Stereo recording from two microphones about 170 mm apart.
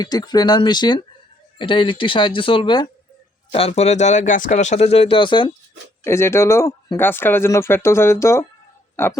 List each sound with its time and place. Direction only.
0.0 s speech: 25° left (ahead or behind)
6.1 s speech: 15° left (ahead or behind)